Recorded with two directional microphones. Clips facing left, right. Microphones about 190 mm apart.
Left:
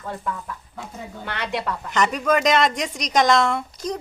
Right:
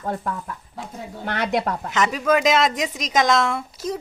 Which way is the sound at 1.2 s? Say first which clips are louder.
Right 5 dB; 45° right (ahead or behind).